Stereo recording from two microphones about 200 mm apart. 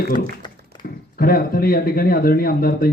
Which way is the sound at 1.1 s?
50° left (ahead or behind).